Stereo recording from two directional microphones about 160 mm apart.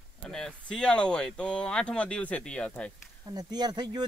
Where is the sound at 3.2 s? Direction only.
25° right (ahead or behind).